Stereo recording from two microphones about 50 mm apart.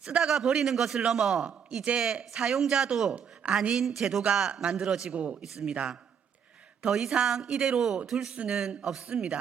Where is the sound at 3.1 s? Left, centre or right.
Right.